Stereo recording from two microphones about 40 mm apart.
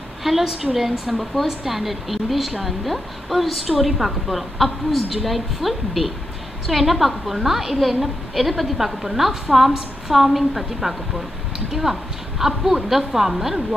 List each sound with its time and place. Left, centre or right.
0.2 s a woman's voice: centre